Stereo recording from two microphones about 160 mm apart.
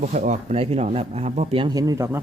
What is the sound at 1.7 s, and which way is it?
Speech, 25° right (ahead or behind).